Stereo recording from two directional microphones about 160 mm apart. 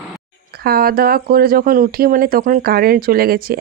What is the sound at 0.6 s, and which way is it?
Speech, 70° right (ahead or behind).